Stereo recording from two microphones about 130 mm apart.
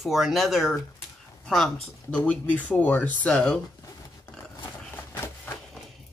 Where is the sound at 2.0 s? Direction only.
10° left (ahead or behind).